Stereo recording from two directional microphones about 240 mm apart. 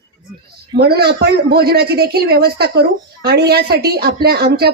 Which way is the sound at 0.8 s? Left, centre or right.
Right.